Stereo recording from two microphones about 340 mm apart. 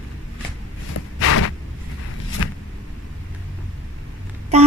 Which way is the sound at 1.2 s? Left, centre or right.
Left.